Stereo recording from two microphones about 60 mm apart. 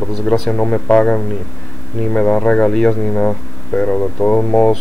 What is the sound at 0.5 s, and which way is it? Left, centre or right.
Speech, centre.